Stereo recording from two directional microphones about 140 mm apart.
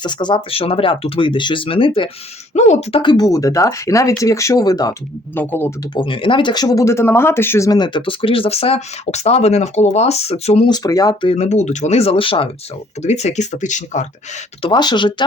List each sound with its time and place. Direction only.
0.0 s speech: 30° left (ahead or behind)
2.5 s speech: 55° left (ahead or behind)
3.0 s speech: 30° left (ahead or behind)
5.3 s speech: 15° left (ahead or behind)
5.9 s speech: 35° left (ahead or behind)
10.7 s speech: 25° left (ahead or behind)
11.3 s speech: 55° left (ahead or behind); by 12.5 s 40° left (ahead or behind)
13.0 s speech: 55° left (ahead or behind)
14.6 s speech: 30° left (ahead or behind)